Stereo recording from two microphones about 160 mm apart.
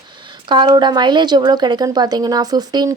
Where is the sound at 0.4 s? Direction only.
30° right (ahead or behind).